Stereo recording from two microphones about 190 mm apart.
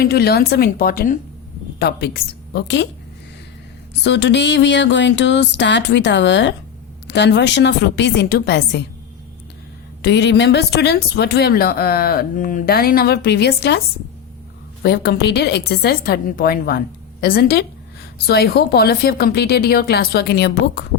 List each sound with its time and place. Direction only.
0.0 s speech: 55° left (ahead or behind)
1.8 s speech: 60° left (ahead or behind)
4.0 s speech: 65° left (ahead or behind)
10.0 s speech: 65° left (ahead or behind)
14.8 s speech: 60° left (ahead or behind)